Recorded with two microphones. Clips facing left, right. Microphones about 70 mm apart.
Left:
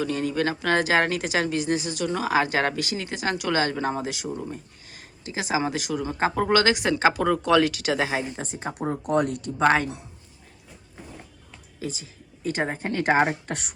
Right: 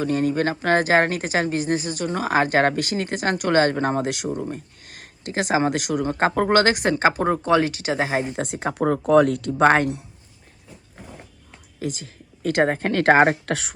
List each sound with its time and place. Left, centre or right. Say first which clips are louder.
0.0 s speech: right 4 dB; right
8.2 s speech: right 6 dB; right
11.8 s speech: right 4 dB; right